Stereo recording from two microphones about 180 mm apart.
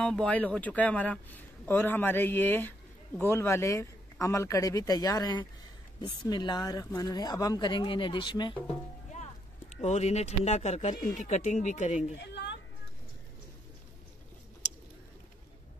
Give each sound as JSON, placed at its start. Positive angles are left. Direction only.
{"t": 0.0, "sound": "speech", "side_deg": 5}
{"t": 9.8, "sound": "speech", "side_deg": 40}
{"t": 12.2, "sound": "speech", "side_deg": 70}